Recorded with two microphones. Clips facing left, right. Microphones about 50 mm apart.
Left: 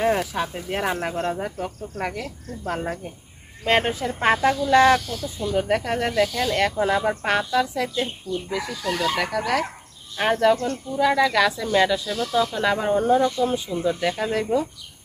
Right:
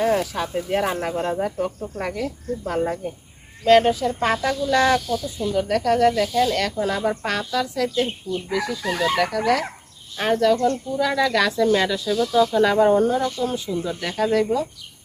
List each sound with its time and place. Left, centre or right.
0.0 s speech: centre
3.6 s speech: left; by 12.1 s centre
12.3 s speech: centre
13.1 s speech: left
13.4 s speech: centre